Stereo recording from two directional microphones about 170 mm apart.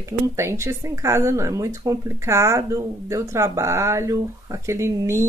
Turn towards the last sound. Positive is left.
turn(degrees=-15)  # may be behind; listen again after turning